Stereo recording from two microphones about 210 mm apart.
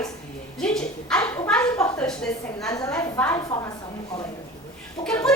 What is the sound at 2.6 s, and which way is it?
A woman's voice, 15° left (ahead or behind).